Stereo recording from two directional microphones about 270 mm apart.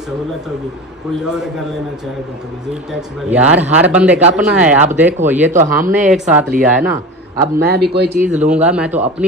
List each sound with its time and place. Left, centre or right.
1.2 s a man's voice: centre
2.9 s a man's voice: centre
7.5 s speech: right
8.6 s a man's voice: centre